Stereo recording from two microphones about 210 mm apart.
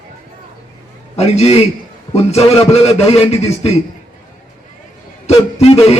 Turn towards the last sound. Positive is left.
turn(degrees=30)  # may be behind; listen again after turning